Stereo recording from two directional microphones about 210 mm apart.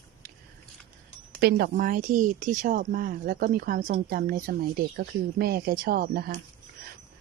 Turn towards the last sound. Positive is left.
turn(degrees=-45)  # may be behind; listen again after turning